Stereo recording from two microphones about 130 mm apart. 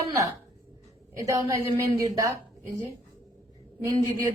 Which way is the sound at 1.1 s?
25° right (ahead or behind).